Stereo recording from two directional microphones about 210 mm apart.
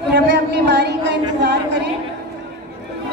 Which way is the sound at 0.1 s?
55° right (ahead or behind).